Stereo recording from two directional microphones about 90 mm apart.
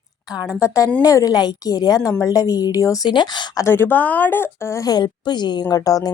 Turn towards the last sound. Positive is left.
turn(degrees=40)  # may be behind; listen again after turning